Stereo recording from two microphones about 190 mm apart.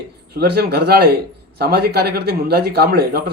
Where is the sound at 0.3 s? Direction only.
55° right (ahead or behind).